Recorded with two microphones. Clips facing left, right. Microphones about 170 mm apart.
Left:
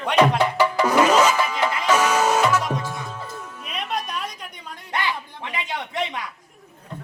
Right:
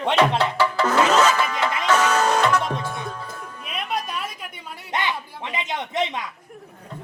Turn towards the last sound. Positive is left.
turn(degrees=-20)  # may be behind; listen again after turning